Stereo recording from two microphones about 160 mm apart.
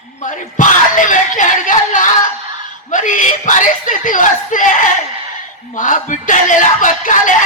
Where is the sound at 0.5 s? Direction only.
55° left (ahead or behind).